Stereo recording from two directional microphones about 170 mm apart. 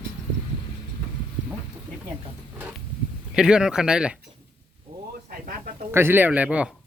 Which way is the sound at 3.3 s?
5° right (ahead or behind).